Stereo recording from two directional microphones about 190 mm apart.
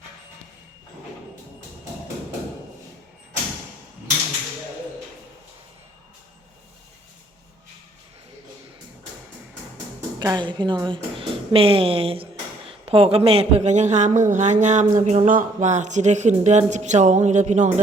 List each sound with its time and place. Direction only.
10.2 s a woman's voice: 20° right (ahead or behind); by 17.7 s 35° right (ahead or behind)